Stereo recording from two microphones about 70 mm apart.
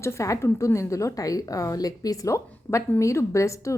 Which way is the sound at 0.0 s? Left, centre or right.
Left.